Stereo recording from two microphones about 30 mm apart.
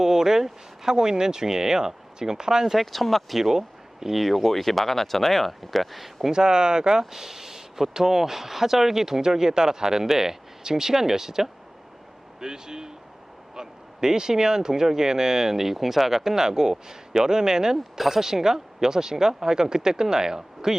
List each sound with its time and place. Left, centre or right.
0.0 s speech: centre
2.7 s speech: centre
3.3 s speech: centre
6.3 s speech: right
7.1 s speech: centre
17.9 s speech: centre